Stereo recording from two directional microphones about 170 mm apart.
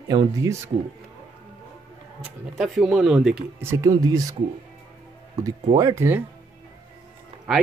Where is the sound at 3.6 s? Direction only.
20° right (ahead or behind).